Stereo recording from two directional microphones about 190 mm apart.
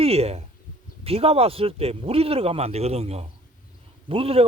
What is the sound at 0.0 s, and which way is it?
Speech, 30° right (ahead or behind).